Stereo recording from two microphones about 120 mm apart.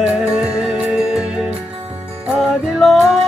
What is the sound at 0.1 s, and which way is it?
Music, 5° right (ahead or behind).